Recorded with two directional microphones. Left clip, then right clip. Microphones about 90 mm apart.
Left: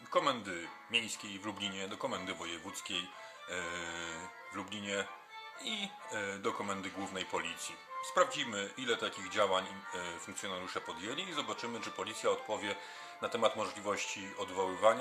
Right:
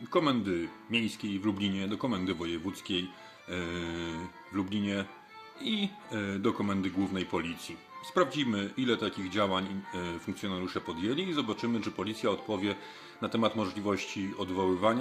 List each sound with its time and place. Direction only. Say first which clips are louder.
0.1 s speech: right 4 dB; 25° right (ahead or behind)